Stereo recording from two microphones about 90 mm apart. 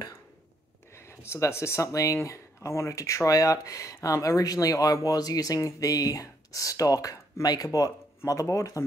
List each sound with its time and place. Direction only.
0.9 s speech: 30° left (ahead or behind)